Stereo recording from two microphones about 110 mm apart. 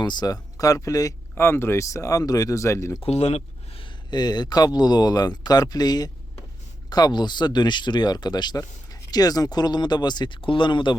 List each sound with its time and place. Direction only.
0.0 s speech: 40° left (ahead or behind)
3.0 s speech: 70° left (ahead or behind)
4.1 s speech: 40° left (ahead or behind)